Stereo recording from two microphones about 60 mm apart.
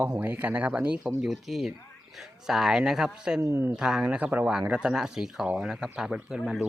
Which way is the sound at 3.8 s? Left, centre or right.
Centre.